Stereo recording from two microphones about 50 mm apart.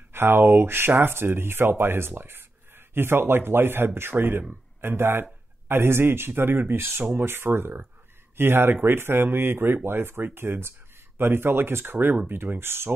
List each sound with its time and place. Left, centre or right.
0.1 s speech: right